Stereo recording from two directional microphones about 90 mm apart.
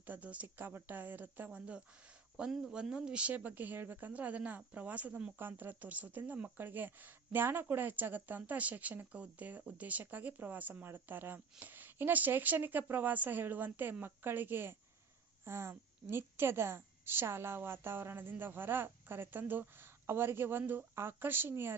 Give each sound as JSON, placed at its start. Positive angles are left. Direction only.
{"t": 0.0, "sound": "speech", "side_deg": -20}